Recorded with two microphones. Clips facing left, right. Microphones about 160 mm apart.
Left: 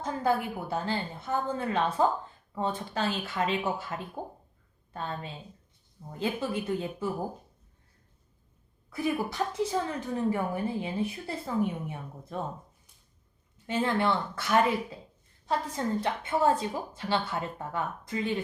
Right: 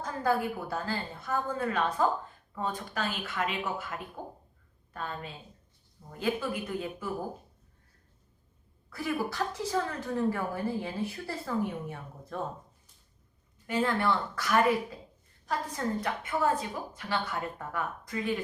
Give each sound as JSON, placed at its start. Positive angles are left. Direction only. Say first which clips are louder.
{"t": 0.0, "sound": "a woman's voice", "louder": "left 1 dB", "side_deg": 20}
{"t": 8.9, "sound": "a woman's voice", "louder": "left 2 dB", "side_deg": 20}
{"t": 13.7, "sound": "a woman's voice", "louder": "left 1 dB", "side_deg": 25}